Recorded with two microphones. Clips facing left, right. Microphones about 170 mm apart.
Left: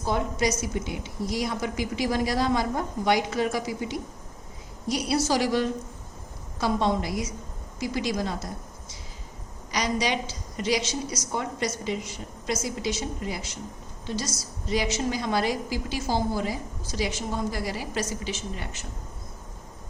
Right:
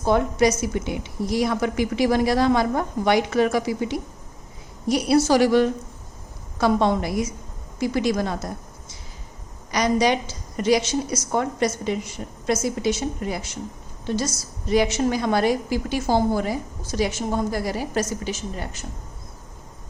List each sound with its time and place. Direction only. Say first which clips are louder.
0.0 s a woman's voice: right 7 dB; 60° right (ahead or behind)
9.7 s a woman's voice: right 7 dB; 50° right (ahead or behind)